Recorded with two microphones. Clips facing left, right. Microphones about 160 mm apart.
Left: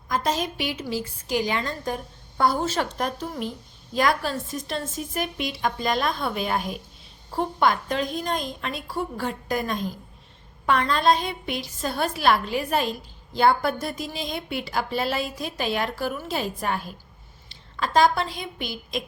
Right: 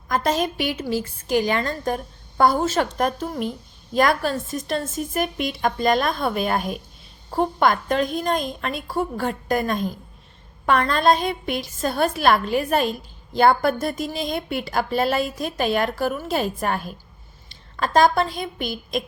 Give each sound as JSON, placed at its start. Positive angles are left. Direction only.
{"t": 0.1, "sound": "a woman's voice", "side_deg": -55}